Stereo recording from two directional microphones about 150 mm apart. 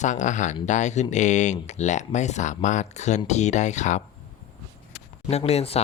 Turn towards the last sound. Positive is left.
turn(degrees=45)  # may be behind; listen again after turning